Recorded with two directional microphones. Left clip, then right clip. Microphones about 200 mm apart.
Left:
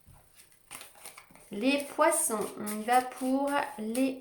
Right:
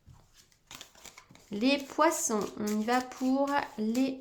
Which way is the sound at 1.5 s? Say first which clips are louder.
Even; 45° right (ahead or behind).